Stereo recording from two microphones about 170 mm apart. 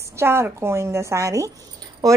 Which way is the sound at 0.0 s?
15° right (ahead or behind).